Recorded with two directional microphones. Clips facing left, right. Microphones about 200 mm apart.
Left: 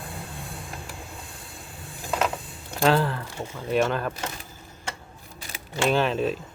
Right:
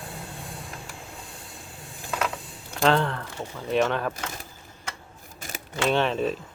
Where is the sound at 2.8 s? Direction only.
5° left (ahead or behind).